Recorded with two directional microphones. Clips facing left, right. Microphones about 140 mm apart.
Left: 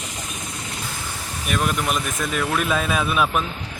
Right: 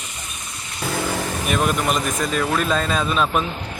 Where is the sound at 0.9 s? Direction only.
75° right (ahead or behind).